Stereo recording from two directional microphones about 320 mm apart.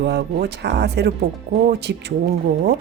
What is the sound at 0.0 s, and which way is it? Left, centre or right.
Speech, right.